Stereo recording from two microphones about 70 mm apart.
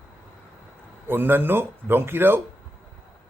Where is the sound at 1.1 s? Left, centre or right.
Right.